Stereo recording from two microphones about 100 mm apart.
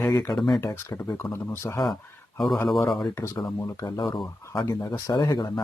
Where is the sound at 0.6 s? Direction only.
25° left (ahead or behind).